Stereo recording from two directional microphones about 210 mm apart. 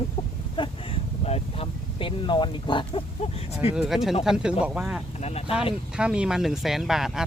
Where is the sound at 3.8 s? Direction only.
Centre (ahead or behind).